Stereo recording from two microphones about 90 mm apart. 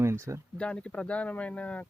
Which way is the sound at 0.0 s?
30° right (ahead or behind).